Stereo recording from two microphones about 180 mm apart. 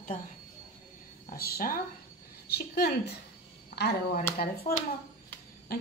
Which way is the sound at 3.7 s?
65° left (ahead or behind).